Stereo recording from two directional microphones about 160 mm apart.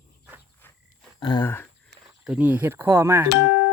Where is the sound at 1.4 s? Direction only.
15° left (ahead or behind).